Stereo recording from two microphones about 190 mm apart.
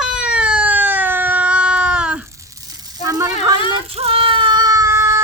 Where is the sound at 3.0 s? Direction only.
20° right (ahead or behind).